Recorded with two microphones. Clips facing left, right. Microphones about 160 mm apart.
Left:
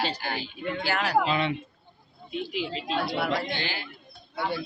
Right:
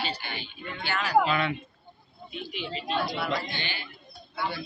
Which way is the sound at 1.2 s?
25° left (ahead or behind).